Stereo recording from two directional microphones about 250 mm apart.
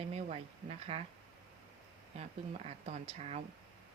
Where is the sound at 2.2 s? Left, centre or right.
Right.